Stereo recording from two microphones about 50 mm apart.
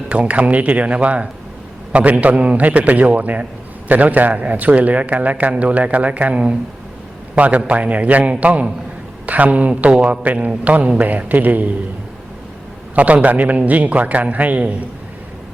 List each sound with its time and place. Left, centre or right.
0.1 s a man's voice: right
13.0 s a man's voice: right